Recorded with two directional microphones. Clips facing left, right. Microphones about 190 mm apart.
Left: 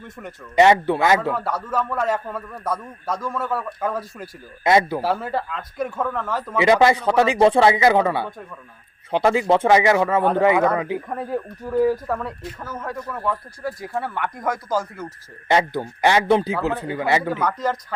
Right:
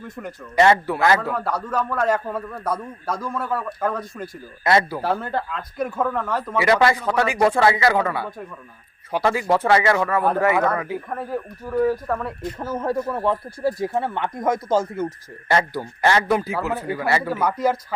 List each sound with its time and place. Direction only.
0.0 s a man's voice: centre (ahead or behind)
0.5 s a man's voice: 15° left (ahead or behind)
1.3 s a man's voice: centre (ahead or behind)
4.6 s speech: 20° left (ahead or behind)
5.0 s a man's voice: 5° left (ahead or behind)
6.6 s a man's voice: 20° left (ahead or behind)
11.8 s a man's voice: centre (ahead or behind)
12.5 s speech: 30° right (ahead or behind)
15.4 s a man's voice: 20° left (ahead or behind)
17.3 s speech: 10° right (ahead or behind)